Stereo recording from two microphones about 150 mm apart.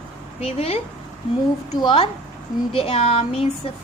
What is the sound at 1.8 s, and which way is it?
A woman's voice, 35° left (ahead or behind).